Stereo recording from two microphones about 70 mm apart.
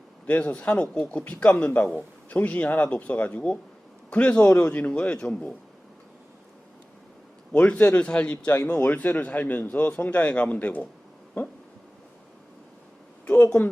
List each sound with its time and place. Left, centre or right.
0.3 s a man's voice: centre
7.5 s a man's voice: left
8.7 s a man's voice: left
13.2 s speech: left